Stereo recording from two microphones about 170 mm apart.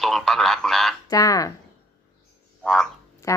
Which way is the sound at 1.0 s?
20° left (ahead or behind).